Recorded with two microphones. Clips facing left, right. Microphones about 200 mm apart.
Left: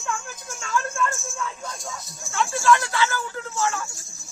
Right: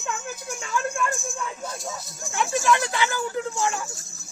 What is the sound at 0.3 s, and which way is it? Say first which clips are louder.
Speech: right 1 dB; 15° right (ahead or behind).